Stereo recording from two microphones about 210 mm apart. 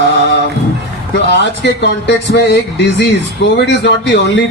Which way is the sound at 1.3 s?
55° left (ahead or behind).